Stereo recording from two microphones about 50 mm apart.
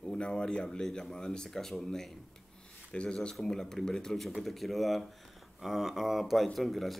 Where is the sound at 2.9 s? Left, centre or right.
Centre.